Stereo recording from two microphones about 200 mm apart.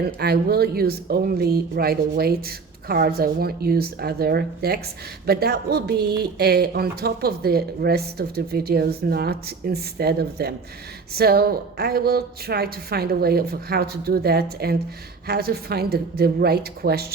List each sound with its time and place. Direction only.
0.0 s speech: 55° right (ahead or behind)